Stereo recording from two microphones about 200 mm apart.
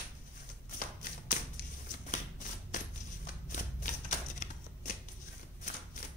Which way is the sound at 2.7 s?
40° left (ahead or behind).